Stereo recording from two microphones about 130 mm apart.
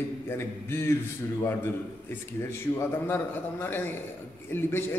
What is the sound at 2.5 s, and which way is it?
A man's voice, 20° left (ahead or behind).